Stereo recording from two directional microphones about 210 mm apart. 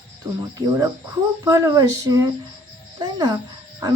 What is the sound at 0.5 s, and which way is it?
Speech, 15° right (ahead or behind).